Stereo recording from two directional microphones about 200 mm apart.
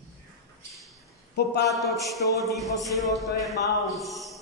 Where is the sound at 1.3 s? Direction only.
55° left (ahead or behind).